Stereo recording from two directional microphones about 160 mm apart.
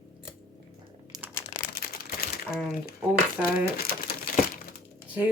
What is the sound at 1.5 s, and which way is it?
Crumpling, 70° left (ahead or behind).